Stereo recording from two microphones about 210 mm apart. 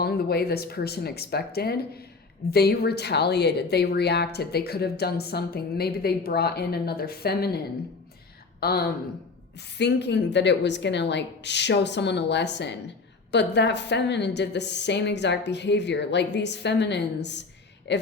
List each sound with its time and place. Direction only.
0.0 s speech: 50° left (ahead or behind)
8.6 s a woman's voice: 50° left (ahead or behind)